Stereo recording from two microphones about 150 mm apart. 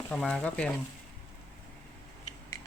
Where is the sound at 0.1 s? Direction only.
5° left (ahead or behind).